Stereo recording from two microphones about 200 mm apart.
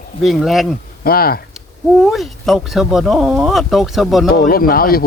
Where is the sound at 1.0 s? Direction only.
50° left (ahead or behind).